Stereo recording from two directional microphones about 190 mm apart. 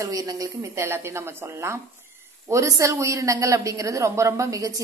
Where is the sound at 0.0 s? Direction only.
20° right (ahead or behind).